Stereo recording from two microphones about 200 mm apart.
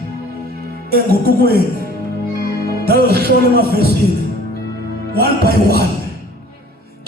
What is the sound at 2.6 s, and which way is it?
Music, 50° right (ahead or behind).